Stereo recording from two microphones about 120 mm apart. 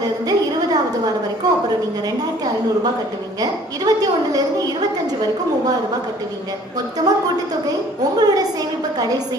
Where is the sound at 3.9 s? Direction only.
30° right (ahead or behind).